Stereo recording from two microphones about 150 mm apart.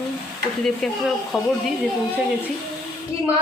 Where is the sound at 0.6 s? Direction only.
Centre (ahead or behind).